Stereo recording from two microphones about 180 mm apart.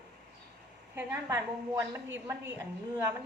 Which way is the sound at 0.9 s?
15° right (ahead or behind).